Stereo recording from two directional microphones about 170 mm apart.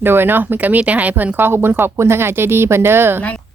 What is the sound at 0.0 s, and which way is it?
Speech, 10° right (ahead or behind).